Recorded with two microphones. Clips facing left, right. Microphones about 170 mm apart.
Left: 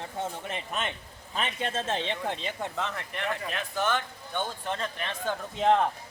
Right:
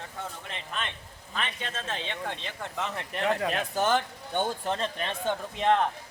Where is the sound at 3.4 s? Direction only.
40° right (ahead or behind); by 5.3 s 25° right (ahead or behind).